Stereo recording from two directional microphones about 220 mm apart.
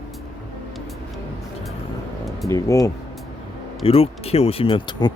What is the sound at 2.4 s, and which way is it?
Speech, 15° left (ahead or behind).